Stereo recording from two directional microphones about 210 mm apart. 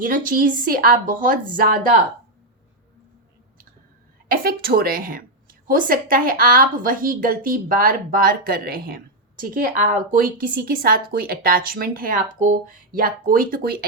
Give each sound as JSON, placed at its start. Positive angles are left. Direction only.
{"t": 0.0, "sound": "a woman's voice", "side_deg": -40}
{"t": 4.3, "sound": "a woman's voice", "side_deg": -45}